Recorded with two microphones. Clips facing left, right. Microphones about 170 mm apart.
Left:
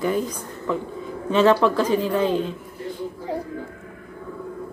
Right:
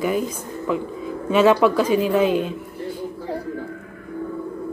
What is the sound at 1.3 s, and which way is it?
Speech, 10° right (ahead or behind).